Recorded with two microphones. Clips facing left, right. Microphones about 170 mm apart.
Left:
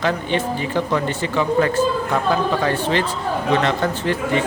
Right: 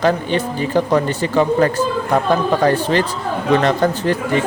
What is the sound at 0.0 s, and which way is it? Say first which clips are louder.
A man's voice: right 4 dB; 40° right (ahead or behind).